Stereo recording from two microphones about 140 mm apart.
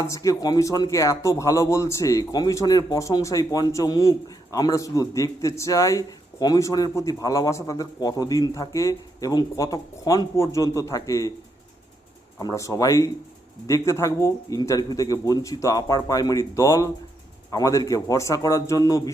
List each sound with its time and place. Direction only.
0.0 s speech: 25° left (ahead or behind)
12.4 s speech: 25° left (ahead or behind)